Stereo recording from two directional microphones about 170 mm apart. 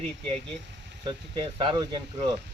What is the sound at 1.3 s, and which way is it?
Speech, 30° right (ahead or behind).